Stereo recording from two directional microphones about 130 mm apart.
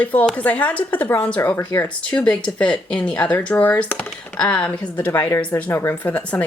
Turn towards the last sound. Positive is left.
turn(degrees=10)  # may be behind; listen again after turning